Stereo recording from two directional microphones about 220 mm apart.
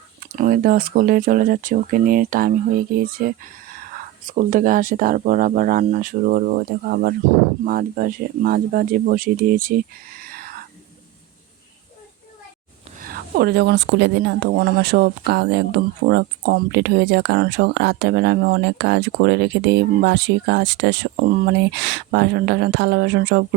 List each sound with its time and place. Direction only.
0.3 s speech: 40° right (ahead or behind)
13.0 s speech: 40° right (ahead or behind)